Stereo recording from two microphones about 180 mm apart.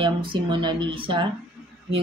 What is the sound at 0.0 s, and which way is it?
Speech, 30° right (ahead or behind).